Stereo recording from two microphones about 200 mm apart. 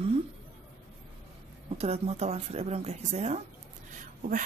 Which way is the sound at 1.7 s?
30° right (ahead or behind).